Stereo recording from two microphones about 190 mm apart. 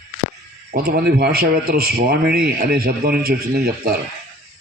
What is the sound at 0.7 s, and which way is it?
A man's voice, 50° right (ahead or behind).